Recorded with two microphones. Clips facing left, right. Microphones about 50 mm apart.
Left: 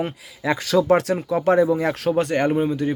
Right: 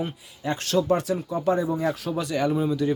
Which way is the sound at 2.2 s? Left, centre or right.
Left.